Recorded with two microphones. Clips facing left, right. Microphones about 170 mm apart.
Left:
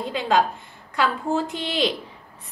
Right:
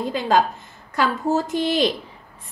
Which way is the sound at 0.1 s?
45° right (ahead or behind).